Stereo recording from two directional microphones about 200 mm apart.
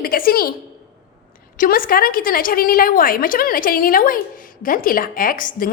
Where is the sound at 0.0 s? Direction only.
45° left (ahead or behind).